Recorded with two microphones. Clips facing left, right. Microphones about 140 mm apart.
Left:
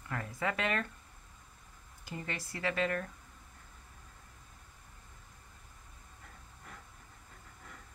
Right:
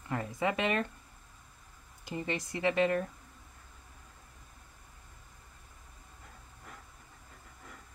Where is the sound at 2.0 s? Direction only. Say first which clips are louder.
Right 6 dB; 20° right (ahead or behind).